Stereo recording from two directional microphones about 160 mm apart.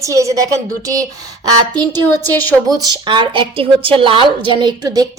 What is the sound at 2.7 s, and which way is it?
A woman's voice, 30° right (ahead or behind).